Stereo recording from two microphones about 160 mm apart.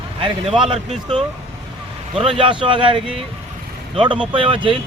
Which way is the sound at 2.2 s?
35° right (ahead or behind).